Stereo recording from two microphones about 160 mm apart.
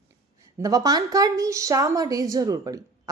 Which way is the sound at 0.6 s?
25° right (ahead or behind).